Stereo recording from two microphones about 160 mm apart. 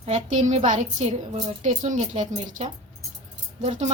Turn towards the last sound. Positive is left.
turn(degrees=-45)  # may be behind; listen again after turning